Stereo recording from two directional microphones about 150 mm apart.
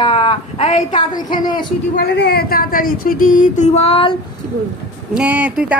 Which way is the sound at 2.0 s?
90° left.